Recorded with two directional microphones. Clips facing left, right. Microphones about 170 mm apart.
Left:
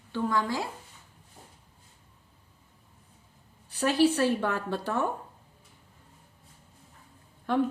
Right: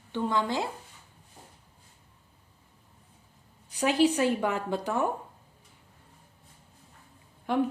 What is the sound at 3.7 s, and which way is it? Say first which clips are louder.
Speech: even; 15° right (ahead or behind).